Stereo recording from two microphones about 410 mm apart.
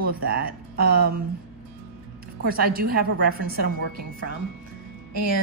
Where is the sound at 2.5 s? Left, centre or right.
Right.